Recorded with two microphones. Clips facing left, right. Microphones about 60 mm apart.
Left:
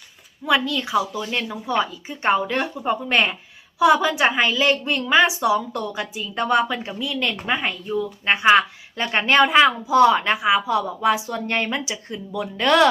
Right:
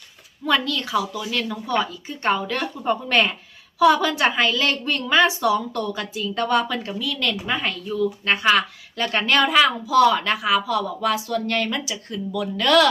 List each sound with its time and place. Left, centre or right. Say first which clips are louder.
0.4 s a woman's voice: left 1 dB; centre